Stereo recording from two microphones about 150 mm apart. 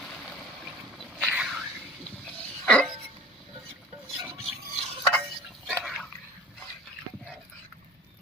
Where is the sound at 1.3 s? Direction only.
5° right (ahead or behind).